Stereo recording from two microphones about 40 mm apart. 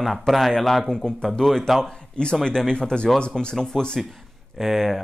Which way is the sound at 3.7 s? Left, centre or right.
Centre.